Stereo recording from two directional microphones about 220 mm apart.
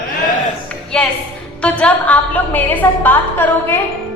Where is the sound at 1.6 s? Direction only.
5° left (ahead or behind).